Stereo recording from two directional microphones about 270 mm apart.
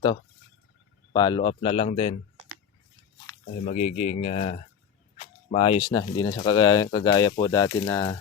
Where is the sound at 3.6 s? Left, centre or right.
Left.